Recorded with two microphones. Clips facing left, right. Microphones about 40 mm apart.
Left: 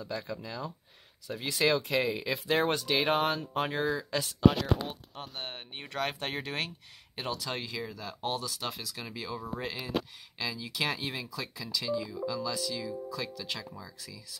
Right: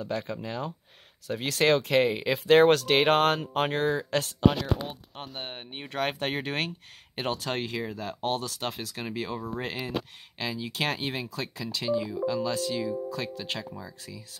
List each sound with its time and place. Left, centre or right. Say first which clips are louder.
0.0 s speech: right 5 dB; right
2.6 s speech: right 8 dB; right
5.4 s speech: right 2 dB; centre
5.9 s speech: right 4 dB; right